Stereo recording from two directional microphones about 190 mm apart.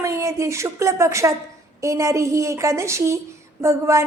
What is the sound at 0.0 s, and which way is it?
A woman's voice, 15° right (ahead or behind).